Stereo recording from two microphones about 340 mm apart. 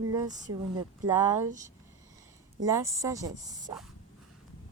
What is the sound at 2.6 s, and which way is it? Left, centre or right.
Speech, centre.